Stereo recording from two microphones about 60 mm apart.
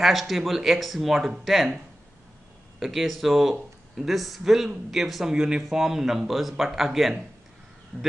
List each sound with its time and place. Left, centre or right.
0.0 s speech: centre
2.8 s speech: centre